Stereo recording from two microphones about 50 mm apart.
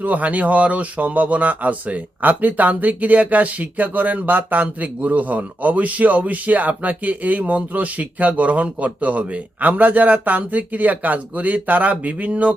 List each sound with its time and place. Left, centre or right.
0.0 s speech: right